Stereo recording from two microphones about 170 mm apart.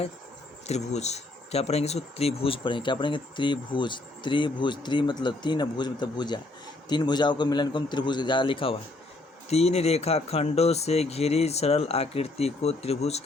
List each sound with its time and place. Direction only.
0.7 s speech: 40° left (ahead or behind)